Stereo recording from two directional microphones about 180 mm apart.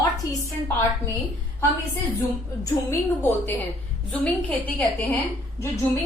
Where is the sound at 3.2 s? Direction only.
10° left (ahead or behind).